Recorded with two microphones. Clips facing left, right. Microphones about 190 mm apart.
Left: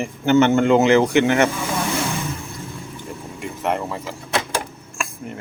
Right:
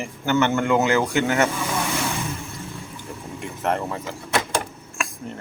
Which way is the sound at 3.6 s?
Centre (ahead or behind).